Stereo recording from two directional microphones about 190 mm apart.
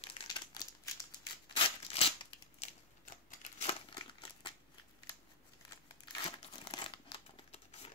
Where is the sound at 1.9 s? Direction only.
30° left (ahead or behind).